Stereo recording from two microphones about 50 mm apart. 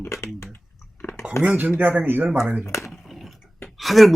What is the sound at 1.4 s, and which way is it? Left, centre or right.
Speech, right.